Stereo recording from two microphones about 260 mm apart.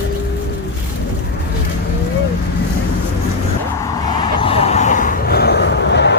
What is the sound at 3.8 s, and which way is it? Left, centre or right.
Vehicle, centre.